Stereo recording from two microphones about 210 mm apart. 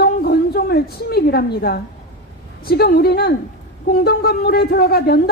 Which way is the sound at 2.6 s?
45° left (ahead or behind).